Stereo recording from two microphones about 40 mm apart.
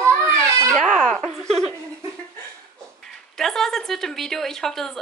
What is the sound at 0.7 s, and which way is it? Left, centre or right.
Baby cry, left.